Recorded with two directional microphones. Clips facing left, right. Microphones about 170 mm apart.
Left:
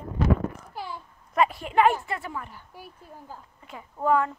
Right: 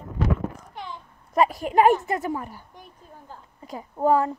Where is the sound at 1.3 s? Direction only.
40° right (ahead or behind).